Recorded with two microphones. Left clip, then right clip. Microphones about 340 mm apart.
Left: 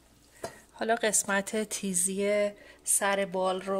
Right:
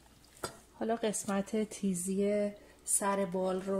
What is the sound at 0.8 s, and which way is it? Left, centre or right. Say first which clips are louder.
A woman's voice: left 6 dB; left.